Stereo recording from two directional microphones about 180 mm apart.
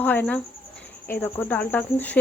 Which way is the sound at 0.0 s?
10° left (ahead or behind).